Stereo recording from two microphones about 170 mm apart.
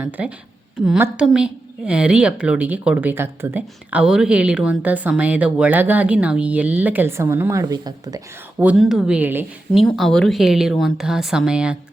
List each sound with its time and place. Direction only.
0.0 s a woman's voice: 10° right (ahead or behind)
8.6 s speech: centre (ahead or behind)
9.8 s speech: centre (ahead or behind)